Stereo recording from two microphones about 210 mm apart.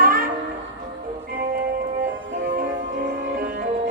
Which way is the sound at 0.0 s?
45° right (ahead or behind).